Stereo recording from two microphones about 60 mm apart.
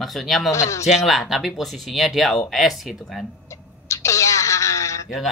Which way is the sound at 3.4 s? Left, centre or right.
Left.